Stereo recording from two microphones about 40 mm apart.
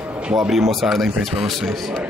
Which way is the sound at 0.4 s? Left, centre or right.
Centre.